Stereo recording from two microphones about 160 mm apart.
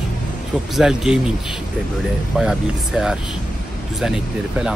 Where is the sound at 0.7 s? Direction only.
5° right (ahead or behind).